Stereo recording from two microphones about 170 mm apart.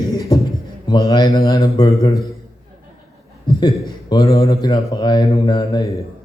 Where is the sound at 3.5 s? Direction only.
25° left (ahead or behind).